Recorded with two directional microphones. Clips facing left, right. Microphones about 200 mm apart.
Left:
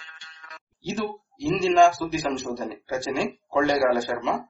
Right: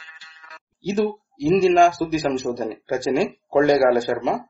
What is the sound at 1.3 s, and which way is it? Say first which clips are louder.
A man's voice: right 4 dB; 45° right (ahead or behind).